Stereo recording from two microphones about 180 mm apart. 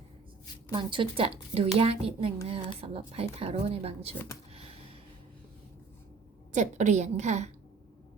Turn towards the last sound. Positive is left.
turn(degrees=-40)  # may be behind; listen again after turning